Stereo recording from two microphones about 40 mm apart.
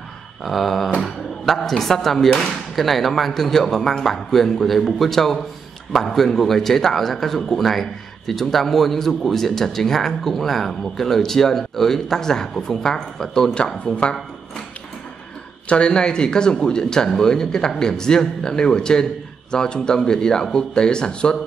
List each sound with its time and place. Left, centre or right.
0.4 s a sound: centre
1.4 s speech: centre; by 14.1 s left
15.7 s speech: left